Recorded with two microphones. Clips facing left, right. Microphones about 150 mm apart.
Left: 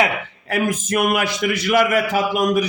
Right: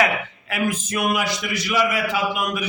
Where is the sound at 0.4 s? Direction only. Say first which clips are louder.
Left 4 dB; 45° left (ahead or behind).